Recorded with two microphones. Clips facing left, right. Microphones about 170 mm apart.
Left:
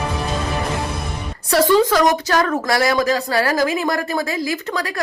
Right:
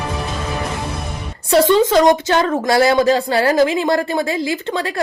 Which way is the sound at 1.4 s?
25° right (ahead or behind).